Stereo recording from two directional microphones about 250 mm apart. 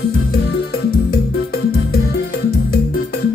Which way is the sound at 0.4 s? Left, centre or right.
Left.